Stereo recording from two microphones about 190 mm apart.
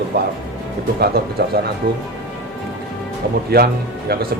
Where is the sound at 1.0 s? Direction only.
55° right (ahead or behind).